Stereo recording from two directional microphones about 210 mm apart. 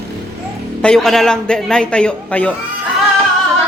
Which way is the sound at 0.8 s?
5° left (ahead or behind).